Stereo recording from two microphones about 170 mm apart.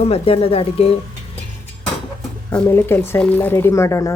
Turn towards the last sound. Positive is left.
turn(degrees=15)  # may be behind; listen again after turning